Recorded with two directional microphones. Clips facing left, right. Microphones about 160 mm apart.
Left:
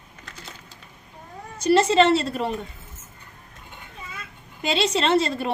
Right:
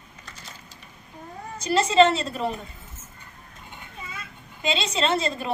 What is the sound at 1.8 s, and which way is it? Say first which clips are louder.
Speech: even; 40° left (ahead or behind).